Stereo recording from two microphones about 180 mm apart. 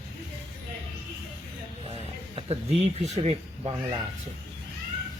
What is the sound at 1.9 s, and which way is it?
Speech, 30° right (ahead or behind).